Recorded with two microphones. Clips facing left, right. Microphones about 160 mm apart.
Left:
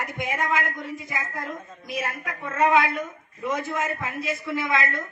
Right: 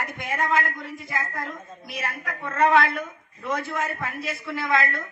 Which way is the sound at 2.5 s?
10° left (ahead or behind).